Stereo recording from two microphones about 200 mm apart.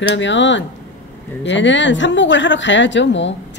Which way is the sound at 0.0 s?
65° left (ahead or behind).